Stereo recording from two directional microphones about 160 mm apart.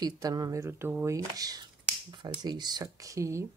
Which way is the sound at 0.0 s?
25° right (ahead or behind).